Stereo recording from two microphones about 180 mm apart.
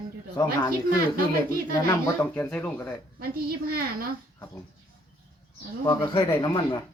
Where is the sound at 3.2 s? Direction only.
55° right (ahead or behind).